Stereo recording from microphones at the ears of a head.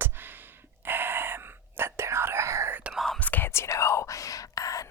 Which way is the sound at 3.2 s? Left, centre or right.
Left.